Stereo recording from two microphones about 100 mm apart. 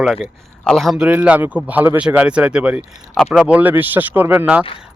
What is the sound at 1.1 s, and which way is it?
Speech, 15° right (ahead or behind).